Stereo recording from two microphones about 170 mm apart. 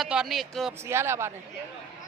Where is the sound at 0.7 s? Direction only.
15° right (ahead or behind).